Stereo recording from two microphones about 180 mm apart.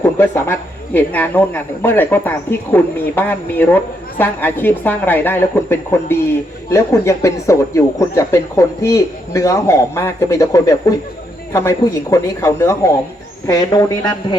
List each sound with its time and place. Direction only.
0.0 s speech: 15° left (ahead or behind)
12.1 s speech: 15° left (ahead or behind)